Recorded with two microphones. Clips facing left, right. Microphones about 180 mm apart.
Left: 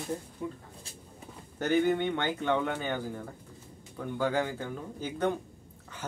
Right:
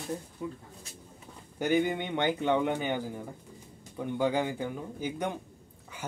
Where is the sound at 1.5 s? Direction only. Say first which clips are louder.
Left 1 dB; 15° right (ahead or behind).